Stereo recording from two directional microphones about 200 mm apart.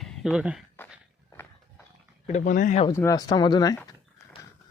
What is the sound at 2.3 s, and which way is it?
Speech, 40° left (ahead or behind).